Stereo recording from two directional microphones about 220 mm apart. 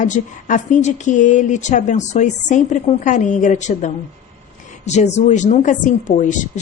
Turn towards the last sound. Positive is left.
turn(degrees=35)  # may be behind; listen again after turning